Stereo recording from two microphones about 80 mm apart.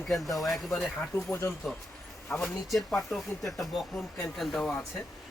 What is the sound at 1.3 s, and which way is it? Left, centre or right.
Speech, left.